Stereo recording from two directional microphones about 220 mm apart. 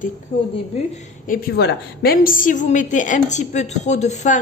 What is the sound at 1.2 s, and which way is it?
A woman's voice, 40° left (ahead or behind).